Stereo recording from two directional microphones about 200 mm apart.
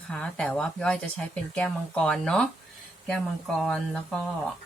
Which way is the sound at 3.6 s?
Centre (ahead or behind).